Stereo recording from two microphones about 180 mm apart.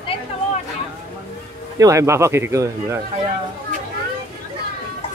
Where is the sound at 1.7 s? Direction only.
15° right (ahead or behind).